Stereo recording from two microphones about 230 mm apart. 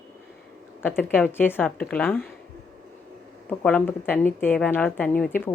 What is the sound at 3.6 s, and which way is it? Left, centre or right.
A woman's voice, centre.